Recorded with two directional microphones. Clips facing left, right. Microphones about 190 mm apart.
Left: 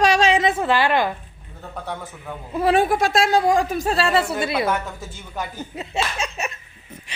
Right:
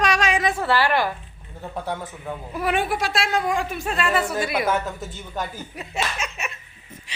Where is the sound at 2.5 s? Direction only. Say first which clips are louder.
Left 6 dB; 30° left (ahead or behind).